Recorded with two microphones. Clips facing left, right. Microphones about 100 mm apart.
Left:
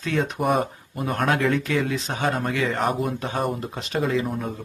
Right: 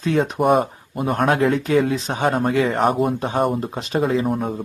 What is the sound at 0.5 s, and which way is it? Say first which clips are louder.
Speech: right 5 dB; 35° right (ahead or behind).